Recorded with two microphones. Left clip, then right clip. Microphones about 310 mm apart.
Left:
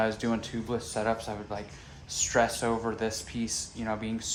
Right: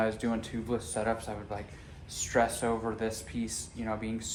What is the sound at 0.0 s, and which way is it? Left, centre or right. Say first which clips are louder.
Speech: left 2 dB; left.